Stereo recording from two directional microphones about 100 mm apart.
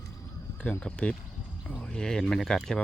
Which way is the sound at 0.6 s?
15° left (ahead or behind).